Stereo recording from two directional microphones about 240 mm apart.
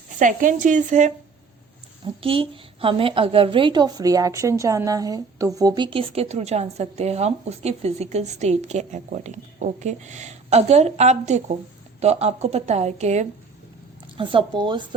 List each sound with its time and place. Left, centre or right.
0.2 s a woman's voice: right
2.2 s a woman's voice: right